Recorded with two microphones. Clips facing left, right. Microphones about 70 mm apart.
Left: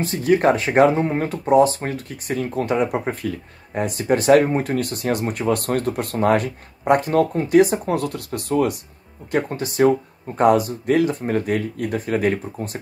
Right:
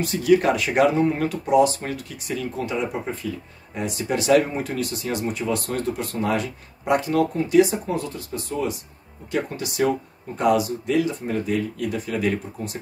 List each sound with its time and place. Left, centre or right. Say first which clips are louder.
0.0 s speech: left 1 dB; left
9.3 s speech: left 4 dB; left